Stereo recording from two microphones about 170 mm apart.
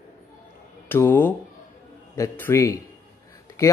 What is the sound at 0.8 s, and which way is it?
Speech, 10° left (ahead or behind).